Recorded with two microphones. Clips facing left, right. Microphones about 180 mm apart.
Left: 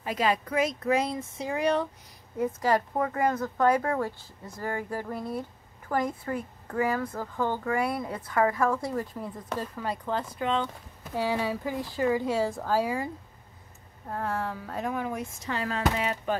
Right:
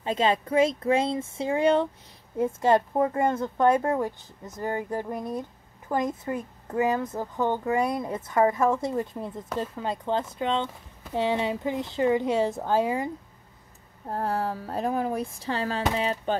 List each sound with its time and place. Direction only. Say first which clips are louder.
0.0 s speech: right 3 dB; 25° right (ahead or behind)
14.0 s speech: right 3 dB; 35° right (ahead or behind)